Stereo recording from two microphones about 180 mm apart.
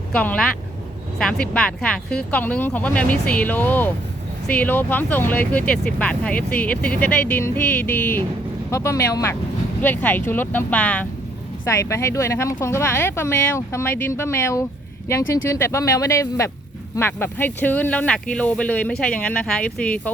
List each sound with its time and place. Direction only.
0.1 s speech: 5° left (ahead or behind)